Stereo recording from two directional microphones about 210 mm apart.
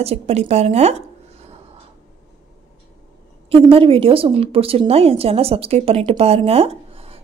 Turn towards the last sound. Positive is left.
turn(degrees=-30)  # may be behind; listen again after turning